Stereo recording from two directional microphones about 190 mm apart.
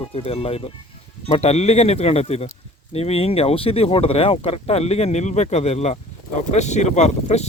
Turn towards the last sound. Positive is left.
turn(degrees=35)  # may be behind; listen again after turning